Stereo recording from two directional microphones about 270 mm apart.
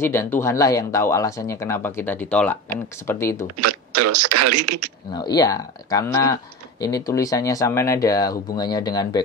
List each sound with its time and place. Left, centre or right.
0.0 s speech: centre
3.5 s speech: right
5.1 s speech: centre